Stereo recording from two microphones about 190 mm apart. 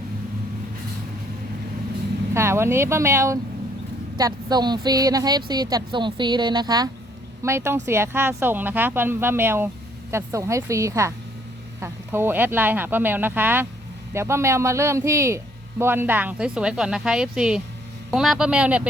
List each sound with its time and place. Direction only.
2.3 s a woman's voice: 15° right (ahead or behind)